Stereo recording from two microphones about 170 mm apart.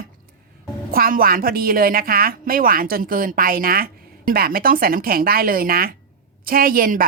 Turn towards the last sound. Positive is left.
turn(degrees=-55)  # may be behind; listen again after turning